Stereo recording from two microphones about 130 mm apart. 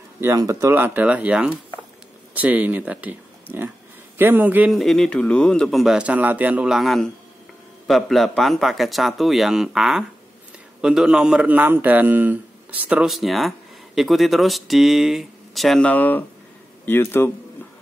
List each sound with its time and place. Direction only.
0.2 s speech: 25° right (ahead or behind)
4.7 s a man's voice: centre (ahead or behind)